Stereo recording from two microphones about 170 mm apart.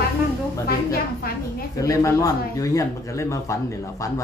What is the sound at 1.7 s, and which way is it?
Speech, 20° left (ahead or behind).